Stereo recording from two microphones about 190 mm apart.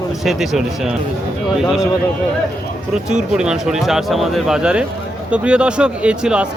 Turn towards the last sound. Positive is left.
turn(degrees=-5)  # may be behind; listen again after turning